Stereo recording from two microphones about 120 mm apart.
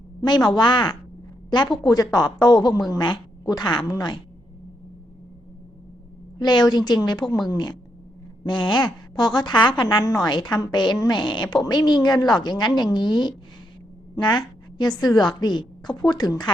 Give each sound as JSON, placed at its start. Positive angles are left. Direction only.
{"t": 0.2, "sound": "speech", "side_deg": 35}
{"t": 6.4, "sound": "speech", "side_deg": 35}